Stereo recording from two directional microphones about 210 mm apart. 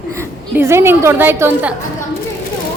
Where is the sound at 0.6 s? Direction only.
10° right (ahead or behind).